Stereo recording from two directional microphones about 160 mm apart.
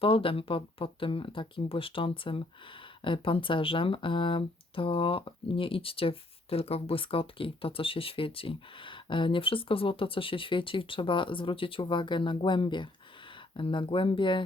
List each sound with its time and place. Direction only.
0.0 s speech: 35° left (ahead or behind)